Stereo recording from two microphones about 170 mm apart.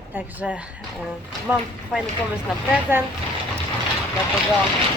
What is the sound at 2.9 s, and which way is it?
Speech, 15° right (ahead or behind).